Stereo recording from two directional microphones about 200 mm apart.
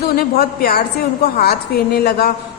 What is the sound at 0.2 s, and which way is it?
Speech, 50° left (ahead or behind).